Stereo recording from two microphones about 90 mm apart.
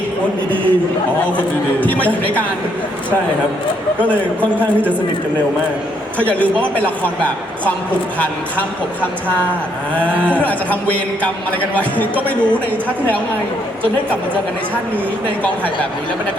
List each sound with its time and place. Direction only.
0.5 s mantra: 15° left (ahead or behind)
1.4 s speech: 15° left (ahead or behind)
4.4 s mantra: 15° left (ahead or behind)
6.1 s mantra: 15° left (ahead or behind)
9.9 s mantra: 15° left (ahead or behind)